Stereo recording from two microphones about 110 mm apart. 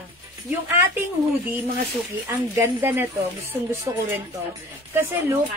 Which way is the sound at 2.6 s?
20° right (ahead or behind).